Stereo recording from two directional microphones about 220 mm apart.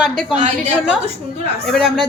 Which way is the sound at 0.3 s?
35° right (ahead or behind).